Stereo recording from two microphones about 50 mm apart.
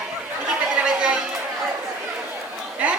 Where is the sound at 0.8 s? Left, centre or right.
Centre.